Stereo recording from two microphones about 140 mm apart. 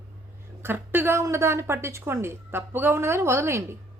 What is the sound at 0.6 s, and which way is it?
A woman's voice, 15° right (ahead or behind).